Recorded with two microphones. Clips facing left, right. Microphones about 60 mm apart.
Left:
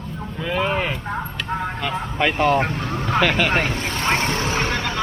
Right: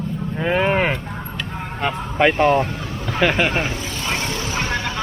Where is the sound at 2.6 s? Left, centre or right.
Left.